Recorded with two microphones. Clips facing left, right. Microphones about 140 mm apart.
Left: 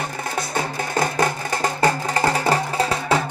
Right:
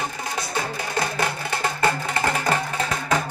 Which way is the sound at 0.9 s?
40° left (ahead or behind).